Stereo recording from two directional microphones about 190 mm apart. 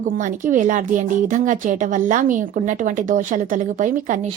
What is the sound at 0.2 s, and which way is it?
Speech, 40° right (ahead or behind).